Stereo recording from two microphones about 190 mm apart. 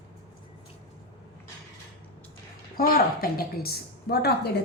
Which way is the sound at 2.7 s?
50° left (ahead or behind).